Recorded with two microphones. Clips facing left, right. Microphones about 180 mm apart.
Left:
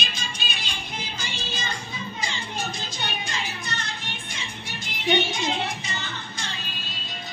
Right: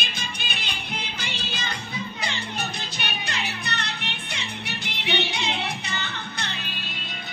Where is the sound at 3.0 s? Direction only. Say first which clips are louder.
Even; 65° right (ahead or behind).